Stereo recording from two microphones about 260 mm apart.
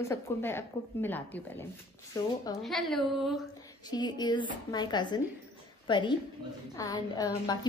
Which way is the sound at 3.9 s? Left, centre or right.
Centre.